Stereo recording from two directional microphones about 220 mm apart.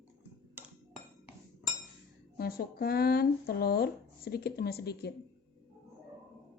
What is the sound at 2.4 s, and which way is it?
Speech, 40° left (ahead or behind).